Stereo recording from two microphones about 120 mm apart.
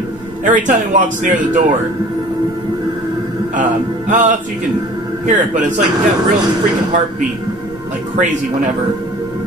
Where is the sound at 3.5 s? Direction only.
90° right.